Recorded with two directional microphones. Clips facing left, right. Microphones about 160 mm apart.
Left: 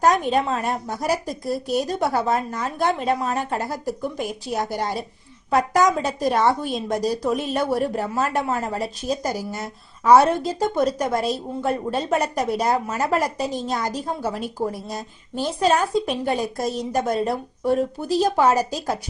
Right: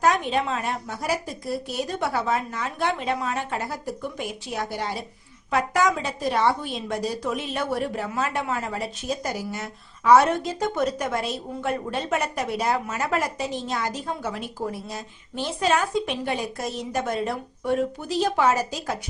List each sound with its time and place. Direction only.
0.0 s a woman's voice: 40° left (ahead or behind)